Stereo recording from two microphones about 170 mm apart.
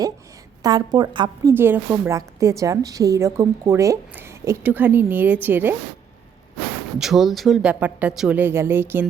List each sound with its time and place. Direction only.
0.6 s a woman's voice: 25° right (ahead or behind)
1.5 s a woman's voice: 15° right (ahead or behind)
7.0 s a woman's voice: centre (ahead or behind)